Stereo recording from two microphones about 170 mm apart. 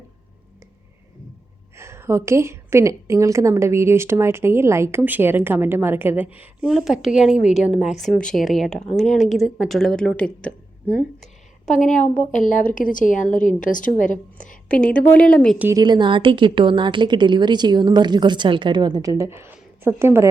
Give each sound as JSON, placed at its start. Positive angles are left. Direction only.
{"t": 1.7, "sound": "a woman's voice", "side_deg": -15}
{"t": 11.7, "sound": "a woman's voice", "side_deg": 45}
{"t": 14.7, "sound": "speech", "side_deg": 5}
{"t": 15.5, "sound": "a woman's voice", "side_deg": -10}
{"t": 15.8, "sound": "a woman's voice", "side_deg": -25}